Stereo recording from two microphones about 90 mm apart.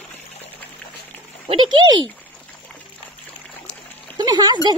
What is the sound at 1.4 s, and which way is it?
Speech, 60° right (ahead or behind).